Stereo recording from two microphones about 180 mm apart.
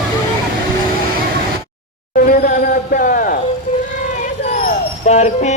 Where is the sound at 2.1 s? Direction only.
50° left (ahead or behind).